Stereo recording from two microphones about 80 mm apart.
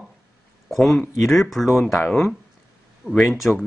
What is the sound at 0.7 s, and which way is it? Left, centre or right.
Speech, centre.